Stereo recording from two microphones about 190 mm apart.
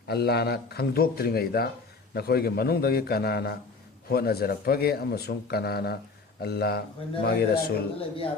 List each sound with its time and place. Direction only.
0.1 s a man's voice: 60° left (ahead or behind)
7.9 s speech: 30° left (ahead or behind)